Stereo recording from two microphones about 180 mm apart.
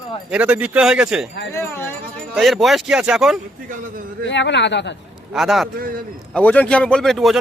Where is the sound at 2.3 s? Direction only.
Centre (ahead or behind).